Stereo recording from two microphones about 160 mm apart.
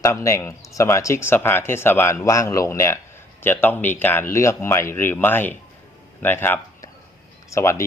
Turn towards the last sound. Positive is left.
turn(degrees=15)  # may be behind; listen again after turning